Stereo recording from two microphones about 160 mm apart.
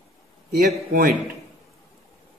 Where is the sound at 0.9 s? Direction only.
65° right (ahead or behind).